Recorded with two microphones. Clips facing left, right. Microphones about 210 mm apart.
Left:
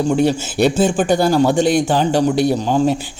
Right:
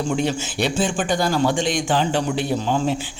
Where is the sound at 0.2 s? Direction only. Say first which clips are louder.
Left 7 dB; 40° left (ahead or behind).